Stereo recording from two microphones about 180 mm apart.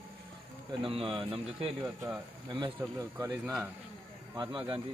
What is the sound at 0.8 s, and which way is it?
A man's voice, 30° right (ahead or behind).